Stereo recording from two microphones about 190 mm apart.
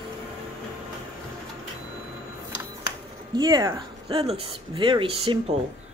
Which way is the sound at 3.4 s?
20° right (ahead or behind).